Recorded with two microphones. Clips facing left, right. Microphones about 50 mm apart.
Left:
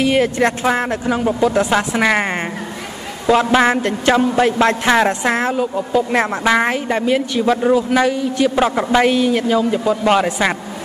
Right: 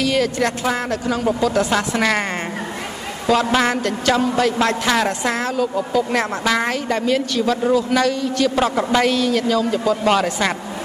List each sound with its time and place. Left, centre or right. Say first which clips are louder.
0.0 s a woman's voice: left 4 dB; left
3.3 s a woman's voice: left 4 dB; left